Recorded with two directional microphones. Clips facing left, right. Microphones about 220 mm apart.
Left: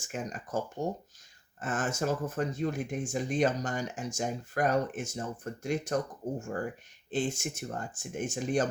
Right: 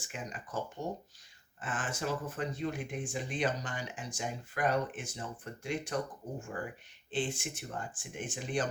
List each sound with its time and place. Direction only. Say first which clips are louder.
0.0 s speech: left 6 dB; 45° left (ahead or behind)
7.1 s speech: left 4 dB; 45° left (ahead or behind)